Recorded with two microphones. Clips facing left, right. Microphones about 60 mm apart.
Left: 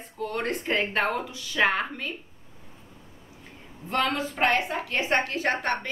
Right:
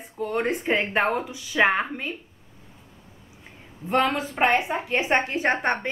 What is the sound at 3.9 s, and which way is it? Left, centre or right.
Speech, centre.